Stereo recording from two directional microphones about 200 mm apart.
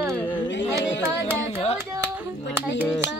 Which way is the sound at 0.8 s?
65° left (ahead or behind).